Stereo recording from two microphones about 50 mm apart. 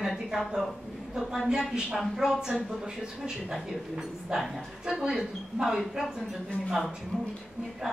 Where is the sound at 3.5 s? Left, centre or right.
Centre.